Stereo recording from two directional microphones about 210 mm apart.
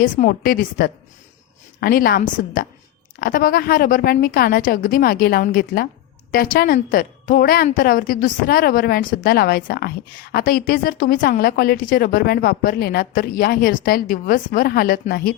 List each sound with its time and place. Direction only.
0.0 s a woman's voice: 40° left (ahead or behind)